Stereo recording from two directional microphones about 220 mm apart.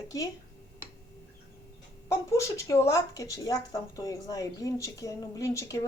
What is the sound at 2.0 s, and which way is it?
Speech, 15° left (ahead or behind).